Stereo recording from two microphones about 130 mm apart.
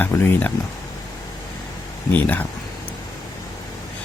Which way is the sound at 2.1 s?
10° left (ahead or behind).